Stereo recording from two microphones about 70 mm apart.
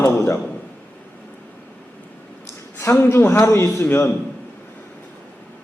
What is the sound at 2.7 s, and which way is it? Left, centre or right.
A man's voice, left.